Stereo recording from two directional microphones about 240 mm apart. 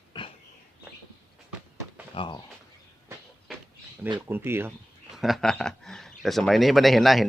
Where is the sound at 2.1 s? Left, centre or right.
Centre.